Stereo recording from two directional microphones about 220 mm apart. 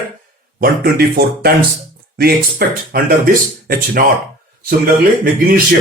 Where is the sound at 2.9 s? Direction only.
40° right (ahead or behind).